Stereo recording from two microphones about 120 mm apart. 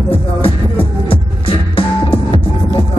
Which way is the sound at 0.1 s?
50° left (ahead or behind).